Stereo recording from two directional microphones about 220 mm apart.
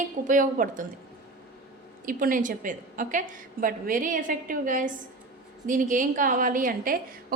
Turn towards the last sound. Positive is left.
turn(degrees=-40)  # may be behind; listen again after turning